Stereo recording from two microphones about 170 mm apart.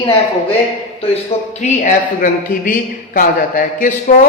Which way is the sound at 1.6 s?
50° left (ahead or behind).